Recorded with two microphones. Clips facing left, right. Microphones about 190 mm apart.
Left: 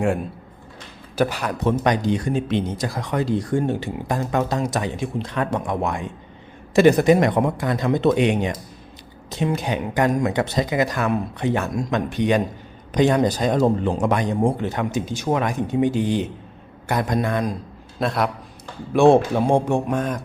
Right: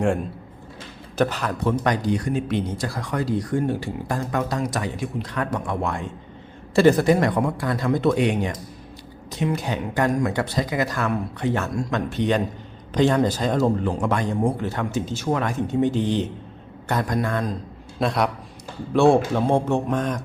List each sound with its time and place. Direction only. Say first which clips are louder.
1.1 s speech: left 1 dB; 10° left (ahead or behind)
18.0 s a man's voice: even; centre (ahead or behind)
18.9 s speech: left 2 dB; 20° left (ahead or behind)